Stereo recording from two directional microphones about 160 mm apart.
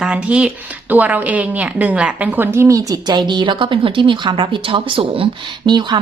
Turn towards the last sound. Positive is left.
turn(degrees=-30)  # may be behind; listen again after turning